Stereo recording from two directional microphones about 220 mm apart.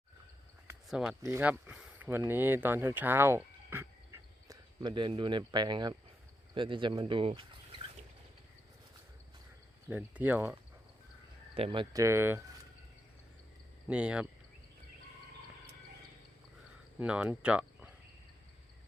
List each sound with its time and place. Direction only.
0.9 s speech: centre (ahead or behind); by 7.4 s 25° right (ahead or behind)
9.9 s speech: 10° right (ahead or behind)
11.5 s speech: 25° right (ahead or behind)
13.8 s speech: 5° right (ahead or behind)
17.0 s speech: 5° right (ahead or behind)